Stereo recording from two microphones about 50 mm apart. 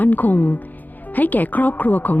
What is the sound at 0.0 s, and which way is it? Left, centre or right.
A woman's voice, left.